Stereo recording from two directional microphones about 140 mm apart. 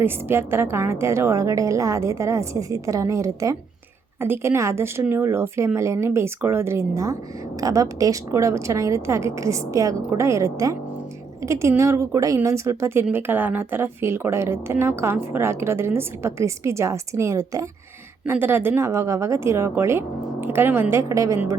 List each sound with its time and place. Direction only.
0.0 s a woman's voice: 15° right (ahead or behind)